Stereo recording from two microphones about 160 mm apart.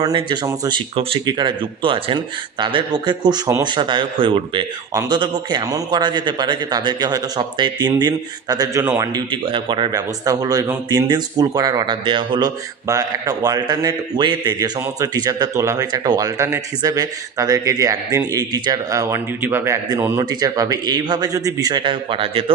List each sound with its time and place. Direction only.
0.0 s a man's voice: 30° right (ahead or behind)